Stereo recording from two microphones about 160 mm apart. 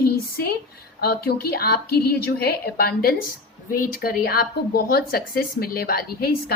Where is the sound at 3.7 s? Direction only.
60° left (ahead or behind).